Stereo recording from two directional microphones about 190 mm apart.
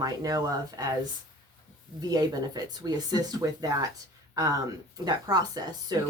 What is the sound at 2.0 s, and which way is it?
Speech, 20° right (ahead or behind).